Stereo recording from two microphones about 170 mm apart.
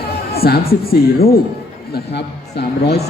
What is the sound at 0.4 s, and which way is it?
Speech, 65° left (ahead or behind).